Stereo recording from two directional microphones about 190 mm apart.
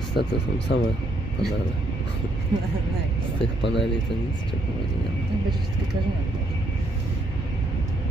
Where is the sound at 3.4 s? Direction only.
65° left (ahead or behind).